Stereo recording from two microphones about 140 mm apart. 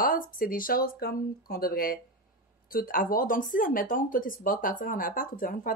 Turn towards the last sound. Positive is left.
turn(degrees=75)  # may be behind; listen again after turning